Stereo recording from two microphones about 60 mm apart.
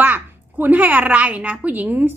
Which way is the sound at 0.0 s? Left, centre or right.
Right.